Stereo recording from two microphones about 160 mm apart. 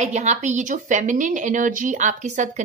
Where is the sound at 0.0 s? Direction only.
45° right (ahead or behind).